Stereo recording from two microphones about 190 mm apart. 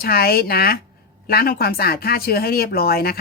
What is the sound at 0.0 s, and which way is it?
Speech, 55° left (ahead or behind).